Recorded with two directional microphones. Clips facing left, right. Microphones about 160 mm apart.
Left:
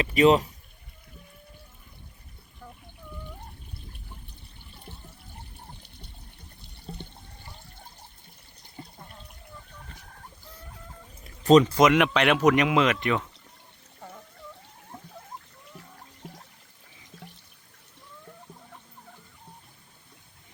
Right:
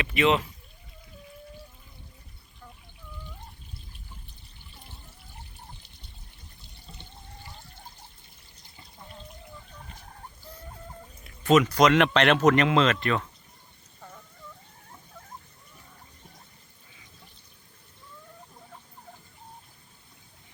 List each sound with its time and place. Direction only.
0.0 s speech: 40° left (ahead or behind)
6.6 s water: 55° left (ahead or behind)
11.2 s a sound: 35° left (ahead or behind)
11.9 s speech: 10° left (ahead or behind)
16.2 s water: 90° left